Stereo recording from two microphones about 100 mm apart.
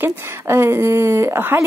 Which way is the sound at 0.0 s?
25° right (ahead or behind).